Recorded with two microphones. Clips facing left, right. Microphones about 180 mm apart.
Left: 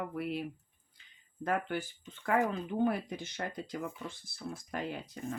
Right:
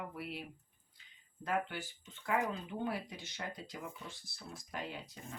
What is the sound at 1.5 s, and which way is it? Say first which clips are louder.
Speech: left 4 dB; 50° left (ahead or behind).